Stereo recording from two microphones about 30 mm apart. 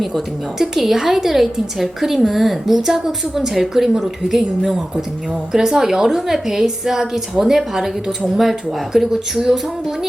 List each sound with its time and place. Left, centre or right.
0.6 s a woman's voice: centre